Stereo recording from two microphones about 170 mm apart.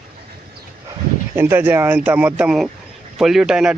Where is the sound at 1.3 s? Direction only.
15° right (ahead or behind).